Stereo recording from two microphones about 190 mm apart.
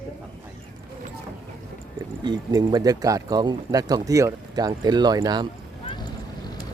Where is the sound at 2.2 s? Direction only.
20° right (ahead or behind).